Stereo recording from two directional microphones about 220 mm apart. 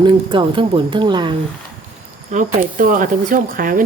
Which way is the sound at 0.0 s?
20° right (ahead or behind).